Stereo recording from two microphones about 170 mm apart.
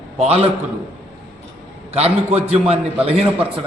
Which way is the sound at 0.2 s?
35° right (ahead or behind).